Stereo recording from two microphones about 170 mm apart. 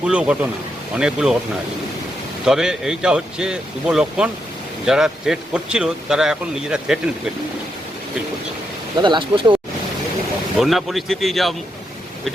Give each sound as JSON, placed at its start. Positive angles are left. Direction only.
{"t": 0.0, "sound": "a man's voice", "side_deg": -5}
{"t": 2.4, "sound": "a man's voice", "side_deg": -5}
{"t": 9.0, "sound": "speech", "side_deg": -30}
{"t": 10.6, "sound": "a man's voice", "side_deg": 0}